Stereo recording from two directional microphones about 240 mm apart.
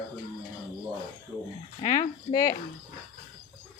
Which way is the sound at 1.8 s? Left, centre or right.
Left.